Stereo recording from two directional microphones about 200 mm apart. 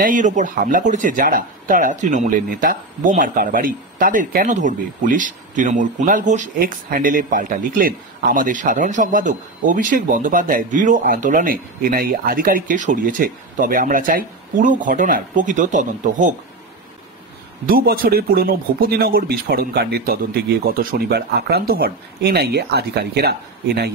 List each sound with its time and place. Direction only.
0.0 s speech: 40° right (ahead or behind)
17.6 s speech: 45° right (ahead or behind)